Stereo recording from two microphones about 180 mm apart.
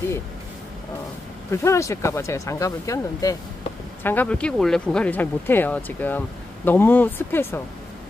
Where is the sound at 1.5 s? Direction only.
15° left (ahead or behind).